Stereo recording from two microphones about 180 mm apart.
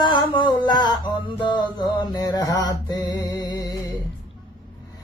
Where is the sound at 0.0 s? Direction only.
25° left (ahead or behind).